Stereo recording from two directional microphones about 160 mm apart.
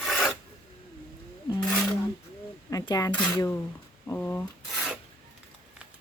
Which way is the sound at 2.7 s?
20° left (ahead or behind).